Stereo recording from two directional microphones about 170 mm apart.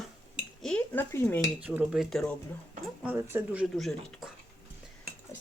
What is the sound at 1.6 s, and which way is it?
Speech, 10° right (ahead or behind).